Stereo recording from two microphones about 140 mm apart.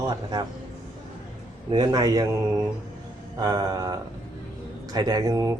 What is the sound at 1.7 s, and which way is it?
Speech, 30° right (ahead or behind).